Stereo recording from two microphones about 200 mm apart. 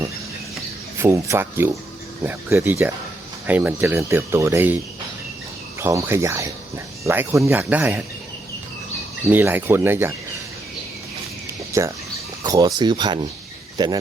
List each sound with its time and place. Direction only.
0.9 s speech: 15° right (ahead or behind)
5.8 s speech: 15° right (ahead or behind)
9.3 s speech: 10° right (ahead or behind)
11.7 s speech: 15° right (ahead or behind)